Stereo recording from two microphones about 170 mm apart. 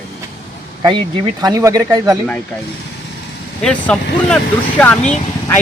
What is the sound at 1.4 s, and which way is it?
Speech, 20° right (ahead or behind).